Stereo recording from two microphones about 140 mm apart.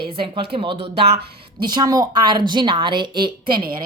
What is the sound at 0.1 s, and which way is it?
A woman's voice, 35° right (ahead or behind).